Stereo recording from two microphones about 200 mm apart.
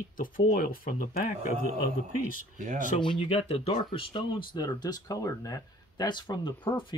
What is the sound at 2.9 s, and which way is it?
Speech, 25° left (ahead or behind).